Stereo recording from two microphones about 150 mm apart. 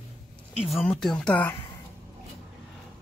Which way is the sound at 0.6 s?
Centre (ahead or behind).